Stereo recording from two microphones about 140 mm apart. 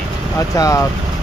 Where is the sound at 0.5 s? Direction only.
25° left (ahead or behind).